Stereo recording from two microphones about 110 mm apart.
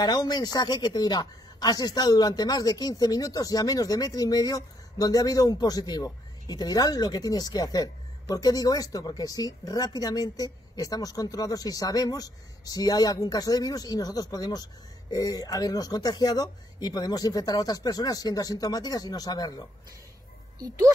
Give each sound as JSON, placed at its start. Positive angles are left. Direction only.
{"t": 0.0, "sound": "a woman's voice", "side_deg": 40}
{"t": 20.5, "sound": "speech", "side_deg": -30}